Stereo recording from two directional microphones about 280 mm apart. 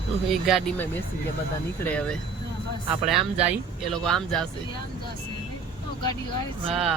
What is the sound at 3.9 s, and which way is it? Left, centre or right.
Speech, centre.